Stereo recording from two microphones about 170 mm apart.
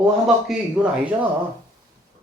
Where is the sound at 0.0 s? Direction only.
5° right (ahead or behind).